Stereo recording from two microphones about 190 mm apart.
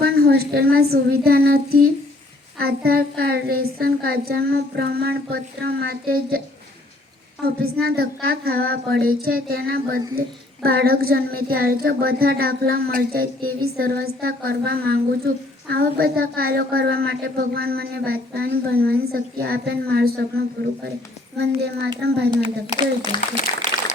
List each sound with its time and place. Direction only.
0.0 s speech: 55° right (ahead or behind)
7.4 s a child's voice: 55° right (ahead or behind)
23.1 s speech: 25° left (ahead or behind)